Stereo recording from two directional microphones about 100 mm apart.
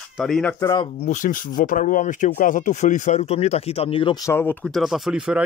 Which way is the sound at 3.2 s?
90° left.